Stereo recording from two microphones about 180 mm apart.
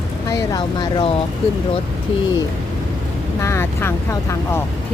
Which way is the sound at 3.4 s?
15° left (ahead or behind).